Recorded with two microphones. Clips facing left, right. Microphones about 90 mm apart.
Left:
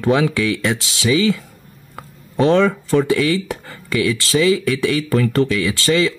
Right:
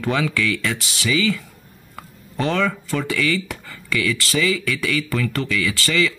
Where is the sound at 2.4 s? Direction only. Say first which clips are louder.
Left 7 dB; 30° left (ahead or behind).